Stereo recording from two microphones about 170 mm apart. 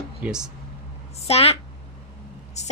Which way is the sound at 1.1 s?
35° left (ahead or behind).